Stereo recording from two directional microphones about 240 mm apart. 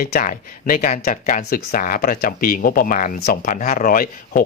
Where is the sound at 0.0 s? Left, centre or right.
Left.